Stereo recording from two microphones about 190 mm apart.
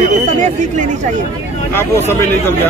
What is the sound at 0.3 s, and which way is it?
Speech, 40° right (ahead or behind).